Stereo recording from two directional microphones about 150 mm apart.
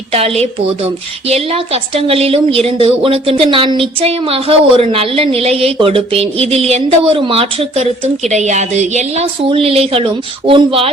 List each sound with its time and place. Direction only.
0.1 s a woman's voice: 40° right (ahead or behind)
8.3 s speech: 50° right (ahead or behind)